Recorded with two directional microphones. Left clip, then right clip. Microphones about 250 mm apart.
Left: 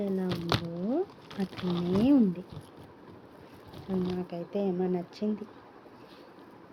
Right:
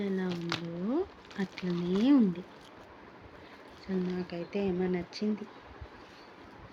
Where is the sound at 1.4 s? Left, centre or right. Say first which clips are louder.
Left 1 dB; right.